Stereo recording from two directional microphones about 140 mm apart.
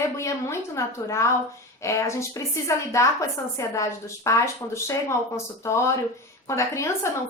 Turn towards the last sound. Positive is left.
turn(degrees=20)  # may be behind; listen again after turning